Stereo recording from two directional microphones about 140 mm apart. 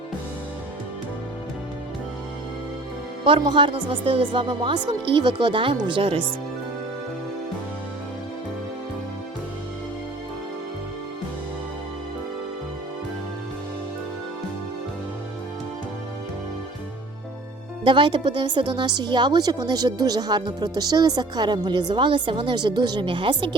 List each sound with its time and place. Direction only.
3.2 s a woman's voice: 35° right (ahead or behind)
17.8 s a woman's voice: 35° right (ahead or behind)